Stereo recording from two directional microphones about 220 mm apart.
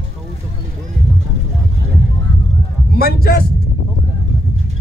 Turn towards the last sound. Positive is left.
turn(degrees=45)  # may be behind; listen again after turning